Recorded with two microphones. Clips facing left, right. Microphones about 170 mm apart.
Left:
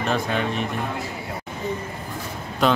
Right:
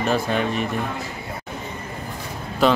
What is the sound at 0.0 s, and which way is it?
Speech, 5° right (ahead or behind).